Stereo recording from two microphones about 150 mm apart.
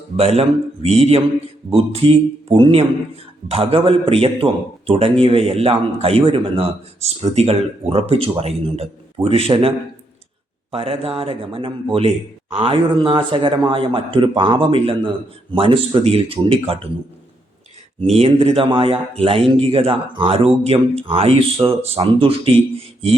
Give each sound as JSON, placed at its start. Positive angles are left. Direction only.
{"t": 0.2, "sound": "a man's voice", "side_deg": -40}
{"t": 18.0, "sound": "a man's voice", "side_deg": -45}